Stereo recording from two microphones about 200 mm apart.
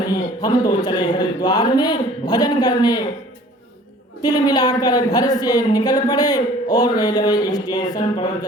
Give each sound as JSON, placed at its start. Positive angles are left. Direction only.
{"t": 0.0, "sound": "a woman's voice", "side_deg": 20}
{"t": 4.2, "sound": "a woman's voice", "side_deg": 20}